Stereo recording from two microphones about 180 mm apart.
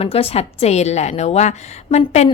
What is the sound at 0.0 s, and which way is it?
A woman's voice, 35° left (ahead or behind).